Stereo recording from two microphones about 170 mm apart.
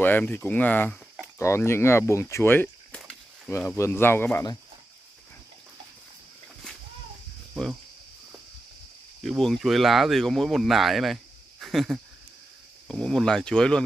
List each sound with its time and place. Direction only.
0.0 s speech: 10° left (ahead or behind)
3.0 s a sound: 5° left (ahead or behind)
3.5 s speech: 15° left (ahead or behind)
9.2 s speech: centre (ahead or behind)